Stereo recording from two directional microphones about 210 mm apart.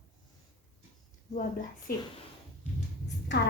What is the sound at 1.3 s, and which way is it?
Speech, 40° left (ahead or behind).